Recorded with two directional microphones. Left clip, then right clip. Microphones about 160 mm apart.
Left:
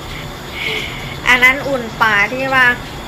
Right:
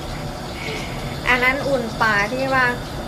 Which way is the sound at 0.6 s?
5° right (ahead or behind).